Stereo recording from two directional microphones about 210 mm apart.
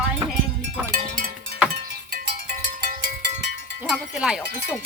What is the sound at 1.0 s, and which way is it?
Music, 45° right (ahead or behind).